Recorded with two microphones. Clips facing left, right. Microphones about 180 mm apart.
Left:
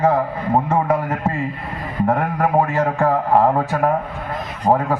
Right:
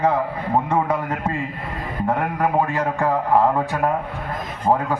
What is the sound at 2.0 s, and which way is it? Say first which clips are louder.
A man's voice: left 3 dB; 40° left (ahead or behind).